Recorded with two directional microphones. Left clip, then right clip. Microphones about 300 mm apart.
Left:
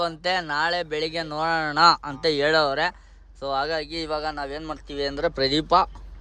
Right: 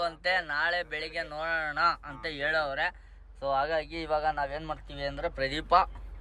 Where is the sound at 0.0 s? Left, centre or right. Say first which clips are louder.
Left 4 dB; centre.